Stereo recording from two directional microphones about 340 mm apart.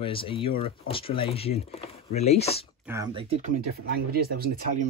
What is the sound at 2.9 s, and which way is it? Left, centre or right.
Speech, centre.